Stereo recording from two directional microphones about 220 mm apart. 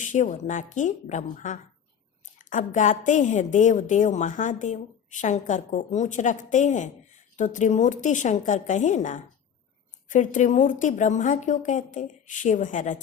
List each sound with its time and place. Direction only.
0.0 s a woman's voice: 35° left (ahead or behind)